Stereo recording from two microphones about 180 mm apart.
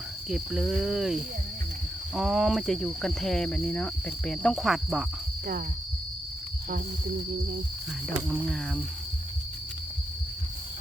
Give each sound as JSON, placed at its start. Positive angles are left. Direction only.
{"t": 0.3, "sound": "speech", "side_deg": 0}
{"t": 8.3, "sound": "speech", "side_deg": -5}